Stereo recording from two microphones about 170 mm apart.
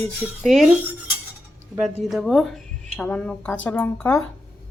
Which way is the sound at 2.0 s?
Centre (ahead or behind).